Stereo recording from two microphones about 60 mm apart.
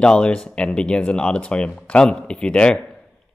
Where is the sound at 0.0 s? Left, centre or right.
Centre.